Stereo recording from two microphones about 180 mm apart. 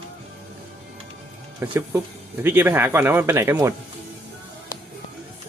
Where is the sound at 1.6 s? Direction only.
15° right (ahead or behind).